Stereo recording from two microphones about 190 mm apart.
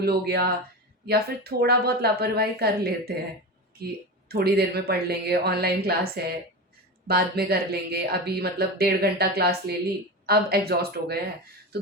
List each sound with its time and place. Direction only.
0.0 s speech: 55° right (ahead or behind)
4.3 s speech: 55° right (ahead or behind)